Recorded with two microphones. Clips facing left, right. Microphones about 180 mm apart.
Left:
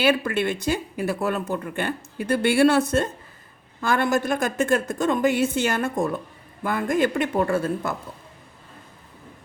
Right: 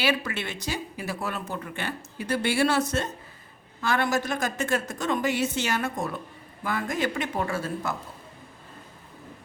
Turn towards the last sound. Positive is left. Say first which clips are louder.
# left 6 dB
turn(degrees=55)  # may be behind; listen again after turning